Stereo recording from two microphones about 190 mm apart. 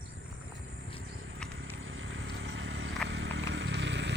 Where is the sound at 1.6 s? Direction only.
80° right.